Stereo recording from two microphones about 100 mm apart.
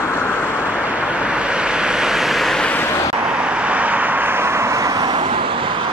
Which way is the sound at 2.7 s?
25° left (ahead or behind).